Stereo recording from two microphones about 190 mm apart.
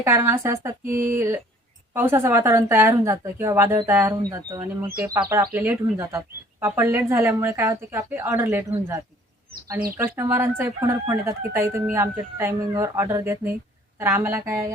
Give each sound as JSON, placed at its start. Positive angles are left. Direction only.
{"t": 0.0, "sound": "speech", "side_deg": -15}
{"t": 10.0, "sound": "speech", "side_deg": -10}